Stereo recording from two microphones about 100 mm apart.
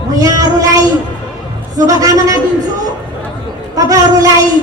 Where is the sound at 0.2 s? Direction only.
40° right (ahead or behind).